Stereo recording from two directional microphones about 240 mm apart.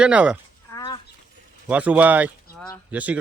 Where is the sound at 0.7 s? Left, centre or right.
Centre.